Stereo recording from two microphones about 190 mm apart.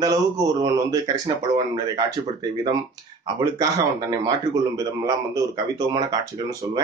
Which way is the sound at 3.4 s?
20° right (ahead or behind).